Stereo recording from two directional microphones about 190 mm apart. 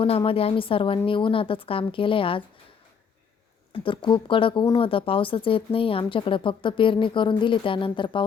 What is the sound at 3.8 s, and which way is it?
Speech, 25° left (ahead or behind).